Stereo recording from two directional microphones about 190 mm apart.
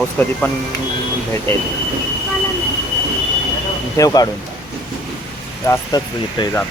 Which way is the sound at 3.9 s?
20° left (ahead or behind).